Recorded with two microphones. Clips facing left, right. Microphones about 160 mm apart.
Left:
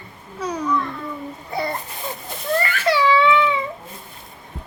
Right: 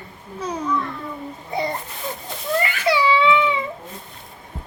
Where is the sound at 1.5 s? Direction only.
20° right (ahead or behind).